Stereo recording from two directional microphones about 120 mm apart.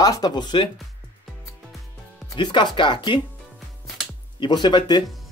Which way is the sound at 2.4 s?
40° left (ahead or behind).